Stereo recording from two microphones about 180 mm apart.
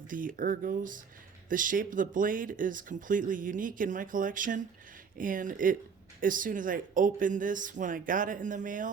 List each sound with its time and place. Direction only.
0.1 s speech: 50° right (ahead or behind)